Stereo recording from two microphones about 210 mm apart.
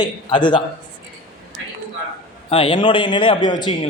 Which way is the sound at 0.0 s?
20° left (ahead or behind).